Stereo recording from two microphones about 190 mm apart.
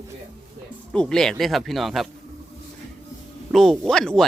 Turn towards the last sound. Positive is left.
turn(degrees=5)  # may be behind; listen again after turning